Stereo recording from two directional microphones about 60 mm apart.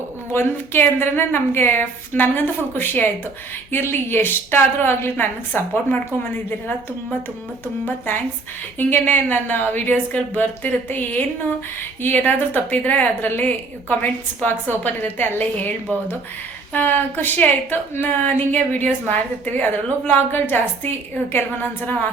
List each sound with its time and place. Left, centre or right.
0.3 s a woman's voice: left
7.9 s a woman's voice: left
16.7 s a woman's voice: left